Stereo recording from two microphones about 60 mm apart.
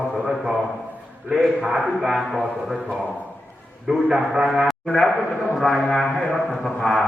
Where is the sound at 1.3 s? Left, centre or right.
Centre.